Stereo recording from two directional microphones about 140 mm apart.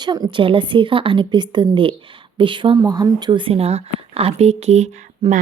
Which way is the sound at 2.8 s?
25° right (ahead or behind).